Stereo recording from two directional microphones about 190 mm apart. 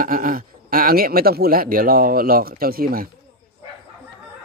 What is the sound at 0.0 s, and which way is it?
Speech, 50° right (ahead or behind).